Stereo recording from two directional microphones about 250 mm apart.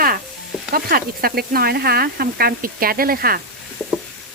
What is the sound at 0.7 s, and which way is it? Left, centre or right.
Speech, right.